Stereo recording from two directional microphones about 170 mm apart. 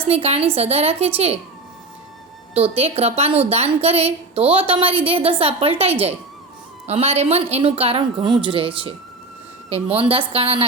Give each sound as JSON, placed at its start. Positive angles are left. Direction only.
{"t": 0.0, "sound": "a woman's voice", "side_deg": -35}
{"t": 2.6, "sound": "a woman's voice", "side_deg": -35}